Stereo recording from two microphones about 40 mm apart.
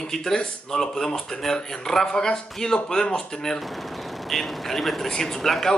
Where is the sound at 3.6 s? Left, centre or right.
Centre.